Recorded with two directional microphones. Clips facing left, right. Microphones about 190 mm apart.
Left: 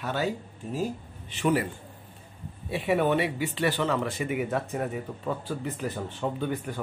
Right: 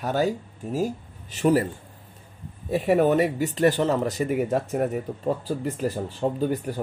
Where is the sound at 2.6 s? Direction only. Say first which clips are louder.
Right 5 dB; 45° right (ahead or behind).